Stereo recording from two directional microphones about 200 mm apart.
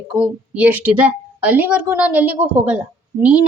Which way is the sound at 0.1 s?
5° right (ahead or behind).